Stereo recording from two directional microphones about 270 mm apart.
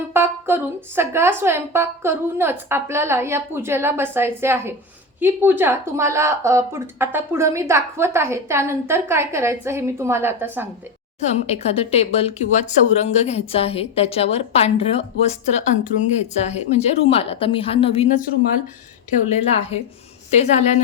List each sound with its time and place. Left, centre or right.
0.1 s a woman's voice: centre
11.2 s speech: left
19.3 s speech: left